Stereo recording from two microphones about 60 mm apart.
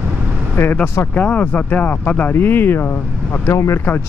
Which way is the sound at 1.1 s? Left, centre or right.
Left.